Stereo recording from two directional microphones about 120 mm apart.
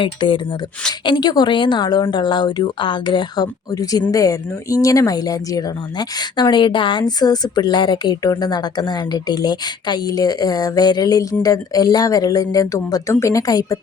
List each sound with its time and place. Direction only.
0.0 s speech: 45° left (ahead or behind)